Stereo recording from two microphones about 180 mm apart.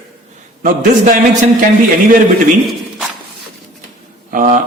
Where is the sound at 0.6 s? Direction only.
45° right (ahead or behind).